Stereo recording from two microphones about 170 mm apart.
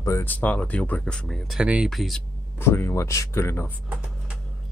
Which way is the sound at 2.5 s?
15° left (ahead or behind).